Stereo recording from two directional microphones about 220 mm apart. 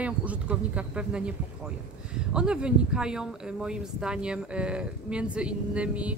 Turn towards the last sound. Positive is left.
turn(degrees=-5)  # may be behind; listen again after turning